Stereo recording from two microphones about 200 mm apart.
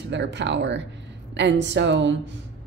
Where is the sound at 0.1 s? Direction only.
60° right (ahead or behind).